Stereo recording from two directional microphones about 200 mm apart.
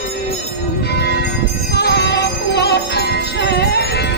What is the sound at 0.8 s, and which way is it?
Music, 55° left (ahead or behind).